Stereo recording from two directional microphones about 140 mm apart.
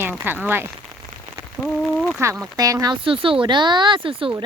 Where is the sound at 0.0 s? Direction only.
15° right (ahead or behind).